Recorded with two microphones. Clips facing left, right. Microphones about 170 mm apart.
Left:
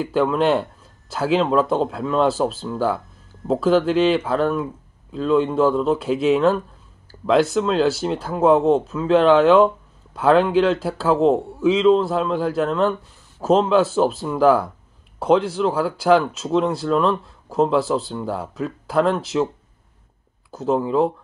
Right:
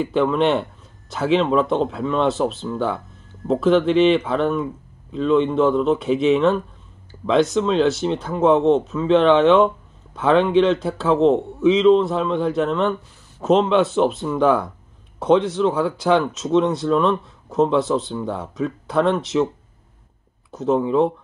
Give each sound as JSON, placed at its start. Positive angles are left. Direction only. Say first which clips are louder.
{"t": 0.1, "sound": "speech", "louder": "left 1 dB", "side_deg": 5}
{"t": 7.1, "sound": "a sound", "louder": "even", "side_deg": 5}
{"t": 7.5, "sound": "speech", "louder": "right 1 dB", "side_deg": 5}
{"t": 20.5, "sound": "speech", "louder": "right 1 dB", "side_deg": 0}